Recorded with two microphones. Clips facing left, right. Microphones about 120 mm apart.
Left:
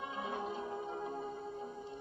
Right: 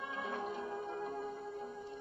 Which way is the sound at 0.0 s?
20° left (ahead or behind).